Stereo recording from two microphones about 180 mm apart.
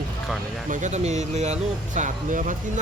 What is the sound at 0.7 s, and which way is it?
Speech, 40° right (ahead or behind).